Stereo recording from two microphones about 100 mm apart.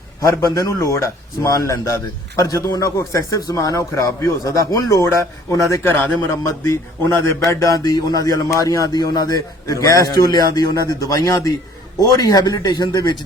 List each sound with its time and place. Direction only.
0.5 s a man's voice: 35° left (ahead or behind)